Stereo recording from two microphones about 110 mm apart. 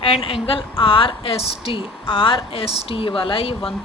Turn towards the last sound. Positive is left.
turn(degrees=55)  # may be behind; listen again after turning